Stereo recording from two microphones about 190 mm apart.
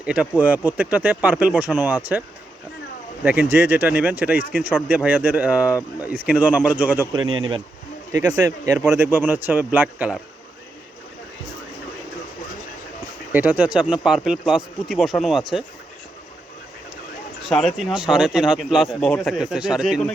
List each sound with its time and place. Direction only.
0.0 s speech: 5° right (ahead or behind)
3.2 s speech: 10° right (ahead or behind)
7.3 s speech: 25° right (ahead or behind); by 10.2 s 10° right (ahead or behind)
13.3 s speech: 10° right (ahead or behind)
17.4 s speech: centre (ahead or behind)